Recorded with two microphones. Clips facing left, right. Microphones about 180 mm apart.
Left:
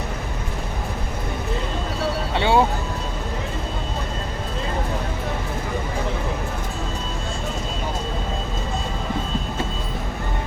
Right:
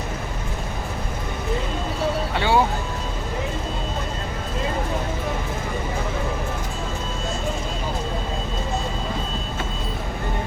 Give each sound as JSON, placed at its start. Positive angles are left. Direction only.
{"t": 2.3, "sound": "vehicle", "side_deg": 25}